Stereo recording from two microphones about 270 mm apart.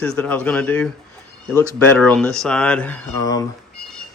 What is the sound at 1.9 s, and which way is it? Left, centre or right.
Speech, centre.